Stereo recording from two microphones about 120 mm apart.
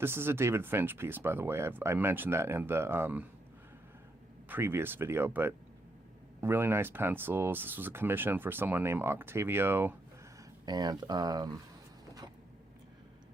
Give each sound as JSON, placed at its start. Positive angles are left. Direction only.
{"t": 0.0, "sound": "speech", "side_deg": -20}
{"t": 4.4, "sound": "speech", "side_deg": -15}
{"t": 10.7, "sound": "speech", "side_deg": -35}